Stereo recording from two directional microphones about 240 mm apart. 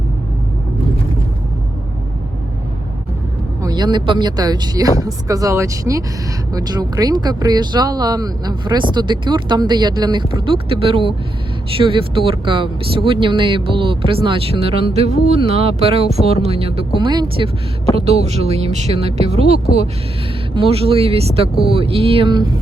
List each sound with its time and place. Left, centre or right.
3.6 s speech: centre
20.6 s speech: right